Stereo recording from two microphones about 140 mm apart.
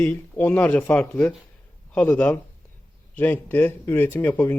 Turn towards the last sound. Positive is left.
turn(degrees=15)  # may be behind; listen again after turning